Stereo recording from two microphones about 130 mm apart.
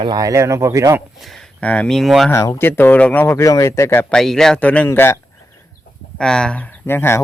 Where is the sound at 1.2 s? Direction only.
5° left (ahead or behind).